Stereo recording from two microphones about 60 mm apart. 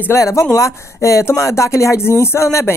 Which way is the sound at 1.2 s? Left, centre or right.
Left.